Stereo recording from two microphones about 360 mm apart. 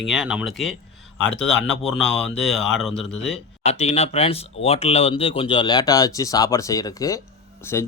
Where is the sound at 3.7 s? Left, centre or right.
Centre.